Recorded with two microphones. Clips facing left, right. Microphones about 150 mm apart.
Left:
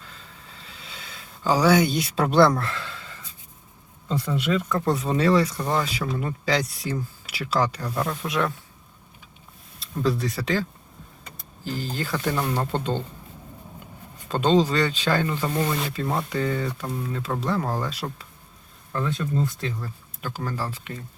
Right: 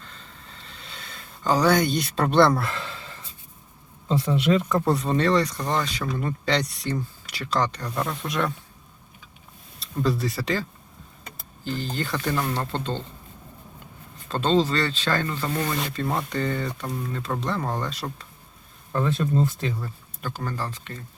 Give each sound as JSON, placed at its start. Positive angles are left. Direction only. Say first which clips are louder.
{"t": 0.0, "sound": "a sound", "louder": "even", "side_deg": 5}
{"t": 4.9, "sound": "speech", "louder": "left 2 dB", "side_deg": 0}
{"t": 9.8, "sound": "speech", "louder": "even", "side_deg": 0}
{"t": 14.3, "sound": "speech", "louder": "left 2 dB", "side_deg": 15}
{"t": 18.9, "sound": "speech", "louder": "right 3 dB", "side_deg": -25}
{"t": 19.8, "sound": "speech", "louder": "even", "side_deg": 5}